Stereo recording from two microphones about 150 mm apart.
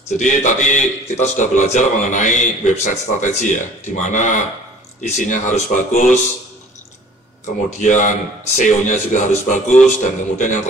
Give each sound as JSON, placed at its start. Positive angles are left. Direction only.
{"t": 0.2, "sound": "a man's voice", "side_deg": 55}
{"t": 7.4, "sound": "a man's voice", "side_deg": 55}